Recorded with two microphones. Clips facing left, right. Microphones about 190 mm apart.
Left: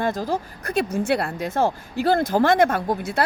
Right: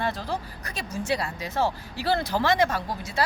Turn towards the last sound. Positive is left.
turn(degrees=55)  # may be behind; listen again after turning